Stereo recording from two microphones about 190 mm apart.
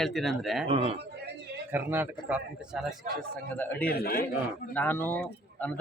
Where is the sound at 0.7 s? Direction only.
30° right (ahead or behind).